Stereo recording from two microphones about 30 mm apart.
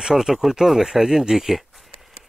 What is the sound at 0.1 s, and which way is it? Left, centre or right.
Speech, centre.